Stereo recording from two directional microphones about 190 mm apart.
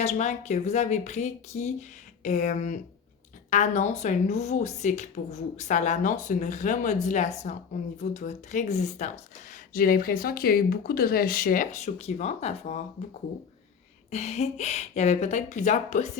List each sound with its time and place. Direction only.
0.0 s speech: 35° left (ahead or behind)
14.1 s speech: 35° left (ahead or behind)